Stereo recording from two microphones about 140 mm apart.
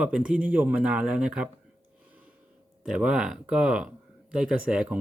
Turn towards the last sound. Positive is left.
turn(degrees=-5)  # may be behind; listen again after turning